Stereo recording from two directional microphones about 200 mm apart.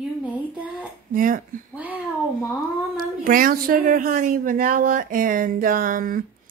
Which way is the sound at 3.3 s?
45° right (ahead or behind).